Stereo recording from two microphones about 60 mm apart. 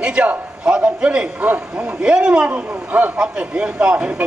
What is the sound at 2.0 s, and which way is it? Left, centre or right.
A man's voice, centre.